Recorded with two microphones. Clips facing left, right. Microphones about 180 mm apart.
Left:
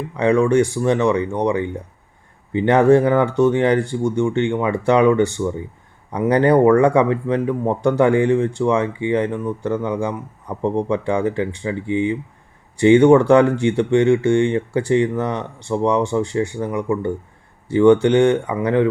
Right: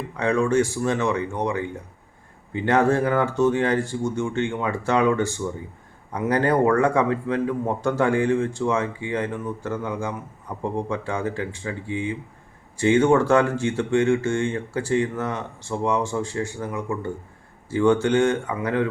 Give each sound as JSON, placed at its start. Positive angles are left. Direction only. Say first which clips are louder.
{"t": 0.2, "sound": "speech", "louder": "left 5 dB", "side_deg": 15}
{"t": 2.7, "sound": "speech", "louder": "left 6 dB", "side_deg": 15}